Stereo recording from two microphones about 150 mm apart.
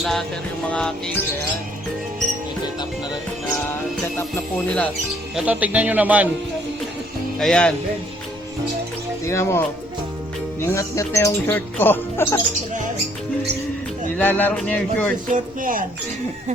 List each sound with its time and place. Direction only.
0.0 s speech: centre (ahead or behind)
5.5 s speech: 10° right (ahead or behind)
7.3 s speech: 5° left (ahead or behind)
9.3 s speech: 20° left (ahead or behind)
10.7 s speech: 20° left (ahead or behind)
14.2 s speech: 10° left (ahead or behind)
15.3 s speech: 65° right (ahead or behind)